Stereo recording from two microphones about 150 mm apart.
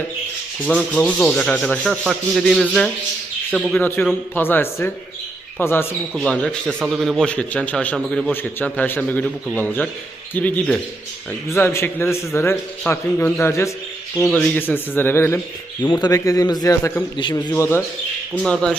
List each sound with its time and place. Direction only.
0.7 s speech: 5° left (ahead or behind)
3.8 s a man's voice: 15° left (ahead or behind)
8.3 s a man's voice: 15° left (ahead or behind)
15.9 s a man's voice: 25° left (ahead or behind)
17.5 s a man's voice: 15° left (ahead or behind)
18.4 s speech: 5° left (ahead or behind)